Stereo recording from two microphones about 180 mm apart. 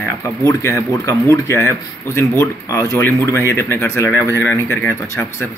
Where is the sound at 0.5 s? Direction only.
15° left (ahead or behind).